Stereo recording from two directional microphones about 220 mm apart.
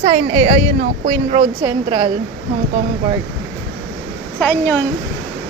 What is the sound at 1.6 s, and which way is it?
Speech, 25° right (ahead or behind).